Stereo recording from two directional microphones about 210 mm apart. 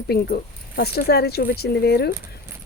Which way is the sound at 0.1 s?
50° left (ahead or behind).